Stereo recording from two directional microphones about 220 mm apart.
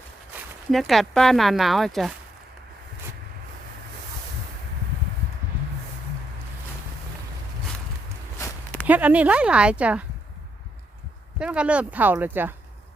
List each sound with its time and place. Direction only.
0.7 s speech: centre (ahead or behind)
8.4 s walk: 10° left (ahead or behind)
8.9 s speech: 5° right (ahead or behind)
11.3 s speech: 5° right (ahead or behind)